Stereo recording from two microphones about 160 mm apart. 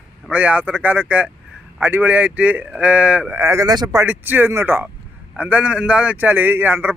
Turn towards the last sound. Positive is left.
turn(degrees=-10)  # may be behind; listen again after turning